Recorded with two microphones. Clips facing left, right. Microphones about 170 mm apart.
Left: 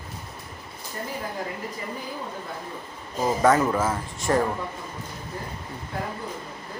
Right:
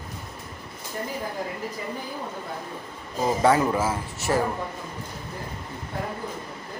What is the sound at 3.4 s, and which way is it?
Speech, 10° right (ahead or behind).